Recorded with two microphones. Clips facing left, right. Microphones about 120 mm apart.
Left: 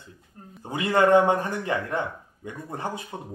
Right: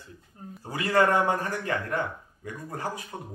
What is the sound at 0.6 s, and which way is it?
Speech, 20° left (ahead or behind).